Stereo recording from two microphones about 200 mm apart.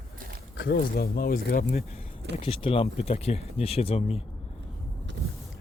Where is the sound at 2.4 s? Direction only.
25° left (ahead or behind).